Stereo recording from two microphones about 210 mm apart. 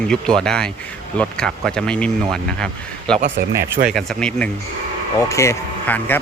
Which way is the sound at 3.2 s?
45° right (ahead or behind).